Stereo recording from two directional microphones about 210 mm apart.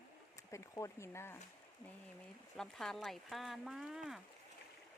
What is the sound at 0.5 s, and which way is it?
Speech, 15° left (ahead or behind).